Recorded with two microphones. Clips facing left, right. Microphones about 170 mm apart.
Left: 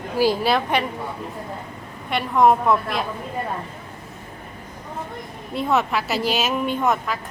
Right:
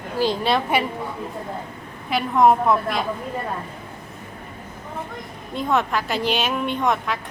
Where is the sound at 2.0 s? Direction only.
Centre (ahead or behind).